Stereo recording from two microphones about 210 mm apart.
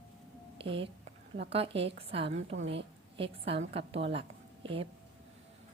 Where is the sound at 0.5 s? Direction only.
25° right (ahead or behind).